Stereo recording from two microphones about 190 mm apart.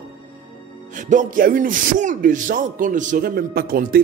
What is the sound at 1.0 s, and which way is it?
A man's voice, 40° right (ahead or behind).